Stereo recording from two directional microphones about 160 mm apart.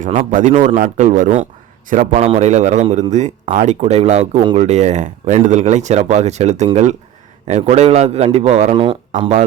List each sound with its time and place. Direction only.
0.0 s a man's voice: 50° right (ahead or behind); by 9.3 s 30° right (ahead or behind)